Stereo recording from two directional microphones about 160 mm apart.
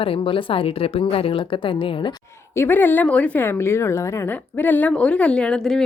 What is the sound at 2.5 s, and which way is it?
A woman's voice, 15° left (ahead or behind).